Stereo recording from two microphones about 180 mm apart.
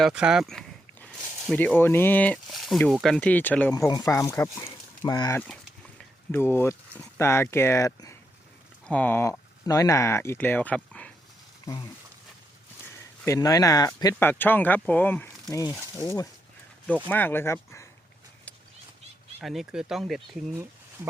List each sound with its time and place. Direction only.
0.0 s speech: 5° right (ahead or behind)
3.8 s speech: 20° left (ahead or behind)
19.4 s speech: centre (ahead or behind)